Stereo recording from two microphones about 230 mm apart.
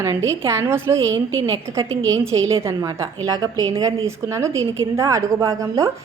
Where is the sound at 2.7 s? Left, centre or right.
Centre.